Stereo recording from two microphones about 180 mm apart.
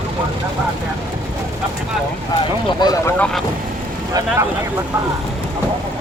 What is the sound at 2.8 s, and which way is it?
Speech, 20° left (ahead or behind).